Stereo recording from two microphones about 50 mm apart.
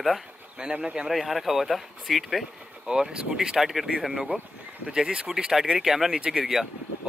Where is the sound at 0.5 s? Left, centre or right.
Centre.